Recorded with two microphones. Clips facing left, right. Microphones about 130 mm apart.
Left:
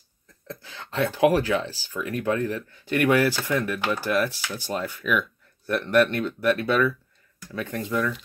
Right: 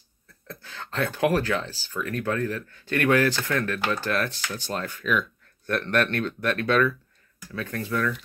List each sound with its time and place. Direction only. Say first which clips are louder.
0.5 s speech: left 1 dB; 15° left (ahead or behind)